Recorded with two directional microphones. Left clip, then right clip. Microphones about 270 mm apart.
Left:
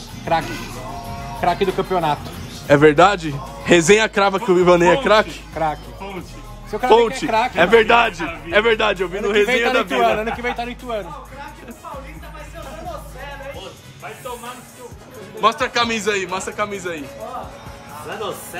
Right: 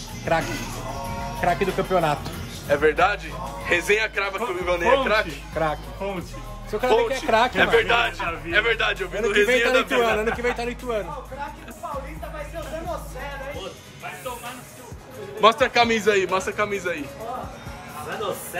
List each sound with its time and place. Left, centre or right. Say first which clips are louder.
0.2 s a man's voice: left 3 dB; centre
2.7 s a man's voice: left 8 dB; left
6.7 s a man's voice: left 6 dB; centre
7.5 s a man's voice: left 6 dB; centre
15.4 s a man's voice: even; centre